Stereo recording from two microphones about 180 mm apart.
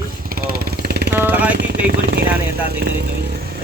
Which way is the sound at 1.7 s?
60° right (ahead or behind).